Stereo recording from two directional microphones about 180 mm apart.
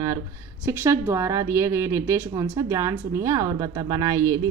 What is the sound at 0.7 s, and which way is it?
A woman's voice, 15° right (ahead or behind).